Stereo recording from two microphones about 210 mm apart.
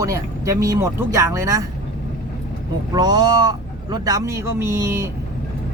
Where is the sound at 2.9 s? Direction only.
20° right (ahead or behind).